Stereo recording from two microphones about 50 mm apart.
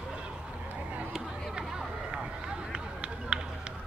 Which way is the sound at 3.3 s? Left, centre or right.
Centre.